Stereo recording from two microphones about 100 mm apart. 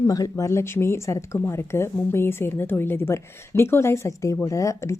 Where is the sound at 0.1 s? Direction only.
35° left (ahead or behind).